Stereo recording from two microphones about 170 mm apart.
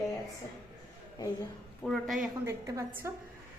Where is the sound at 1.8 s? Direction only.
Centre (ahead or behind).